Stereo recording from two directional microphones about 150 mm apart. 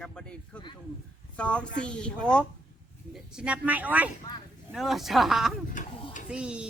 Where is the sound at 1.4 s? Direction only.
5° left (ahead or behind).